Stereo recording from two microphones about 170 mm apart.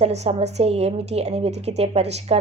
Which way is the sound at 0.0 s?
40° right (ahead or behind).